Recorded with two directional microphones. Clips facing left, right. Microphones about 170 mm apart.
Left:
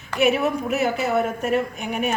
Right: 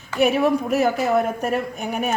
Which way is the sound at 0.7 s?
40° right (ahead or behind).